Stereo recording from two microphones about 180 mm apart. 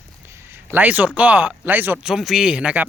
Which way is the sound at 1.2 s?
10° right (ahead or behind).